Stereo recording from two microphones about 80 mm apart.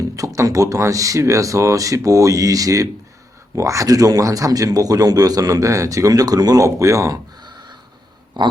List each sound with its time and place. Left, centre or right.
0.2 s speech: right
7.4 s a sound: right
8.4 s speech: right